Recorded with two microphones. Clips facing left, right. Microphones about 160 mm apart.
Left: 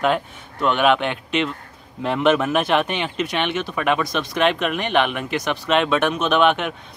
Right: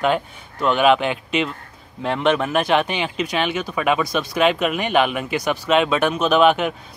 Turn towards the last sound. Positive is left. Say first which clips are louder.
# right 2 dB
turn(degrees=0)  # may be behind; listen again after turning